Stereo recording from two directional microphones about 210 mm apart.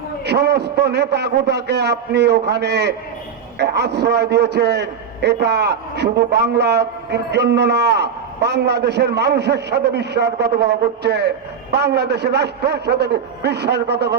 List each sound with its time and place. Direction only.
0.3 s a man's voice: 50° right (ahead or behind)